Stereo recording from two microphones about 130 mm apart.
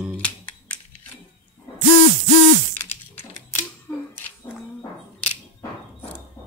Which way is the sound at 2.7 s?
15° left (ahead or behind).